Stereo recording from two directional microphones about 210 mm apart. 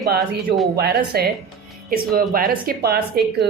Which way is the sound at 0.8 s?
50° right (ahead or behind).